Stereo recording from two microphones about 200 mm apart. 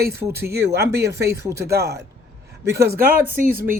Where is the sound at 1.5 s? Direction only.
55° right (ahead or behind).